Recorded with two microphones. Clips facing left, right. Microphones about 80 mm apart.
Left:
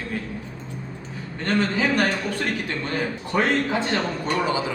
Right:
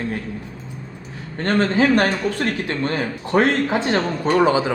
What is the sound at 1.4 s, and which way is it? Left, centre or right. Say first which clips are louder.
Speech: right 4 dB; right.